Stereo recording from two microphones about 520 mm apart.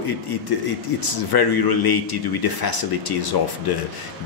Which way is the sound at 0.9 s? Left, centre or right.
Left.